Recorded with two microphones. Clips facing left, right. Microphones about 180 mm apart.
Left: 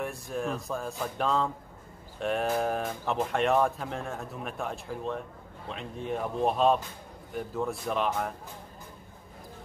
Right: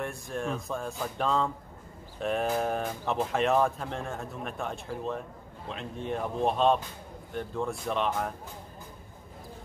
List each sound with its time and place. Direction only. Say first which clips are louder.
0.0 s speech: left 1 dB; centre (ahead or behind)